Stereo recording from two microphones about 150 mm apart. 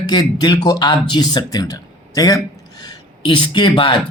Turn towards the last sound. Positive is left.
turn(degrees=30)  # may be behind; listen again after turning